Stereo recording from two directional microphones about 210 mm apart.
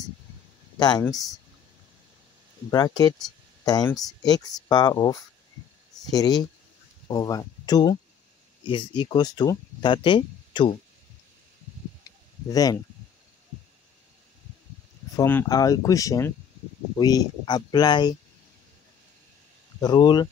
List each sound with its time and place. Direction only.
0.7 s speech: 20° left (ahead or behind)
2.7 s speech: 20° left (ahead or behind)
12.0 s a sound: 20° left (ahead or behind)
15.1 s speech: 15° left (ahead or behind)
19.8 s speech: 20° left (ahead or behind)